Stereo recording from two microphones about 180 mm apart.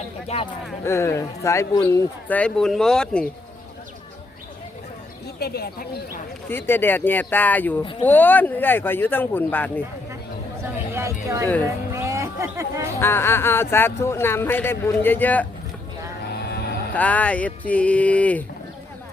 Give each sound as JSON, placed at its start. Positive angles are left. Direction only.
{"t": 0.3, "sound": "speech", "side_deg": 35}
{"t": 0.9, "sound": "speech", "side_deg": 15}
{"t": 2.3, "sound": "speech", "side_deg": 5}
{"t": 5.4, "sound": "speech", "side_deg": 60}
{"t": 6.5, "sound": "speech", "side_deg": 10}
{"t": 7.8, "sound": "speech", "side_deg": 30}
{"t": 8.0, "sound": "speech", "side_deg": 10}
{"t": 10.9, "sound": "speech", "side_deg": -15}
{"t": 11.9, "sound": "a sound", "side_deg": -15}
{"t": 13.0, "sound": "speech", "side_deg": 15}
{"t": 16.9, "sound": "speech", "side_deg": 10}